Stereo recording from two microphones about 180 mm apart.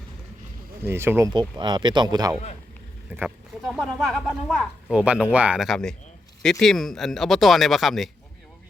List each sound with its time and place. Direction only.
0.8 s speech: 15° right (ahead or behind)
1.3 s speech: 25° right (ahead or behind)
3.1 s speech: 5° right (ahead or behind)